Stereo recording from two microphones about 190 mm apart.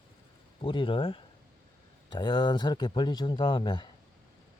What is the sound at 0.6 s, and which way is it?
Speech, 25° left (ahead or behind).